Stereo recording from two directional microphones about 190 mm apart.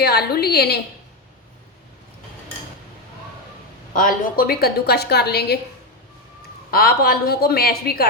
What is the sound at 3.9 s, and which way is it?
A woman's voice, 45° left (ahead or behind).